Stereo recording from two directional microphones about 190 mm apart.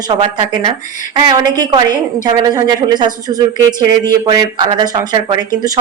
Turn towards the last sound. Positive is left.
turn(degrees=-20)  # may be behind; listen again after turning